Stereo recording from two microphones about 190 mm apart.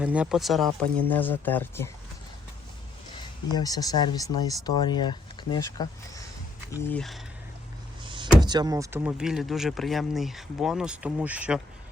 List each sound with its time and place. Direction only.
0.0 s speech: 5° right (ahead or behind); by 1.9 s 10° left (ahead or behind)
3.5 s speech: 20° left (ahead or behind)
8.0 s door: 25° right (ahead or behind)
8.4 s speech: 20° right (ahead or behind); by 11.6 s 5° right (ahead or behind)